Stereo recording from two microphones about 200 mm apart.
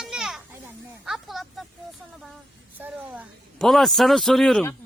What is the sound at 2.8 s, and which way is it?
A man's voice, 10° right (ahead or behind).